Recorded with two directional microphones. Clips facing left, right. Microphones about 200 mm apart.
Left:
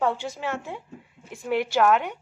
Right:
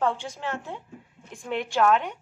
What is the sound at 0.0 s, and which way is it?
A woman's voice, 10° left (ahead or behind).